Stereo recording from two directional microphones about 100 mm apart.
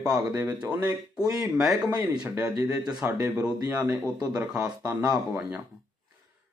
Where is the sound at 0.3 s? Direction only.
20° right (ahead or behind).